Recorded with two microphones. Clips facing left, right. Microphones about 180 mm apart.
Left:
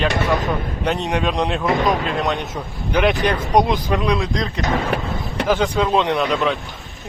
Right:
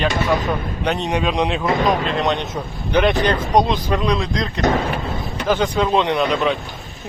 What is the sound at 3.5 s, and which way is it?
Speech, 20° right (ahead or behind).